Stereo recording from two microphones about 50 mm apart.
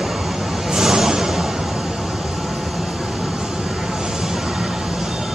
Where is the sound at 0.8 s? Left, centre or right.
Centre.